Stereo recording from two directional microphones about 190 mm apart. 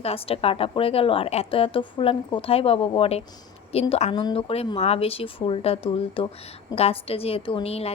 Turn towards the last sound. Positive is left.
turn(degrees=30)  # may be behind; listen again after turning